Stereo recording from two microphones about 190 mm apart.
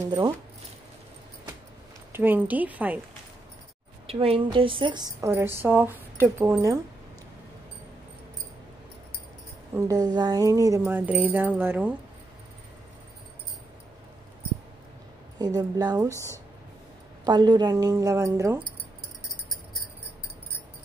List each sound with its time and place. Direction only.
2.1 s a woman's voice: 10° right (ahead or behind)
4.1 s a woman's voice: 30° right (ahead or behind); by 6.8 s 15° right (ahead or behind)
9.8 s a woman's voice: 20° right (ahead or behind)
15.3 s speech: 20° right (ahead or behind)
17.2 s speech: 20° right (ahead or behind)